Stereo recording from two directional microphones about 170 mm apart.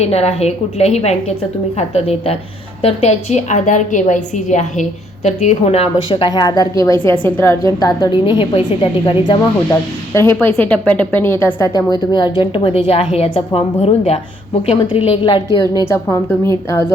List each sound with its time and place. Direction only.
0.0 s a woman's voice: 40° left (ahead or behind)
10.2 s a woman's voice: 15° left (ahead or behind); by 15.6 s 30° left (ahead or behind)
15.8 s a woman's voice: 15° left (ahead or behind)